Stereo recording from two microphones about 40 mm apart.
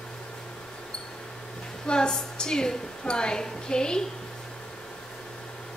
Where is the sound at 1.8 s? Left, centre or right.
Left.